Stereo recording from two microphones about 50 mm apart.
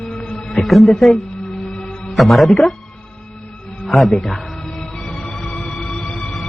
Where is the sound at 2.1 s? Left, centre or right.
Centre.